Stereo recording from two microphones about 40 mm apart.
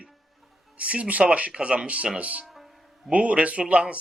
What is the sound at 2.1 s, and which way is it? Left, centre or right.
Speech, right.